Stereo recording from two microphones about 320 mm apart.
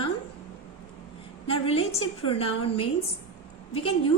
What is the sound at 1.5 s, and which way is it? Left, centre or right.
A woman's voice, centre.